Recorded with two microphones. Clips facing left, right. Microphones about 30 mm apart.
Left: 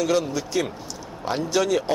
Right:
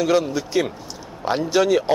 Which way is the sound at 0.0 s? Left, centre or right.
Centre.